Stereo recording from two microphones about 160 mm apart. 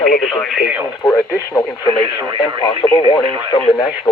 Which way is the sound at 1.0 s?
20° left (ahead or behind).